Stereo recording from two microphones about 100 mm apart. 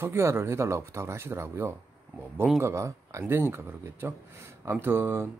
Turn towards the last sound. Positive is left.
turn(degrees=-20)  # may be behind; listen again after turning